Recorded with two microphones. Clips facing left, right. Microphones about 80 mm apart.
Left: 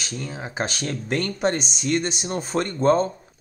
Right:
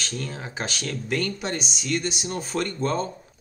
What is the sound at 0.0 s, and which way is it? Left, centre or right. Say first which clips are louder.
Speech: left 1 dB; centre.